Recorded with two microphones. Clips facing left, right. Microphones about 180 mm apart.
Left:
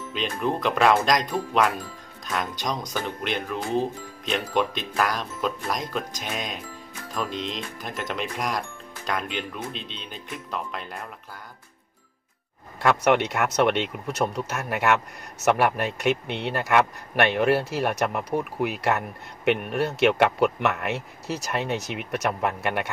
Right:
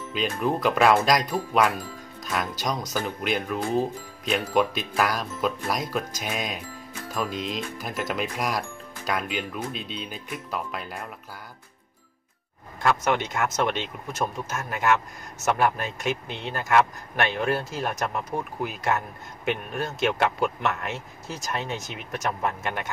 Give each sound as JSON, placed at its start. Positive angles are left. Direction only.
{"t": 0.1, "sound": "speech", "side_deg": -5}
{"t": 12.8, "sound": "a man's voice", "side_deg": 65}